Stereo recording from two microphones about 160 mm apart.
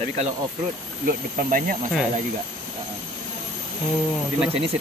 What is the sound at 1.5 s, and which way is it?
Speech, 60° right (ahead or behind).